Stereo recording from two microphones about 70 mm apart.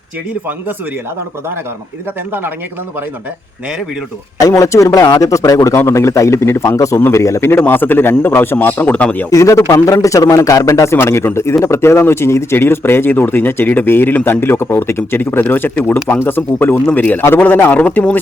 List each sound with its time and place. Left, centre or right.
4.4 s a man's voice: left
7.6 s a man's voice: left
9.3 s a man's voice: left
10.9 s a man's voice: left